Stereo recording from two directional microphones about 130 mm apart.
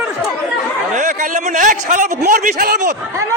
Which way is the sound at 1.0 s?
80° right.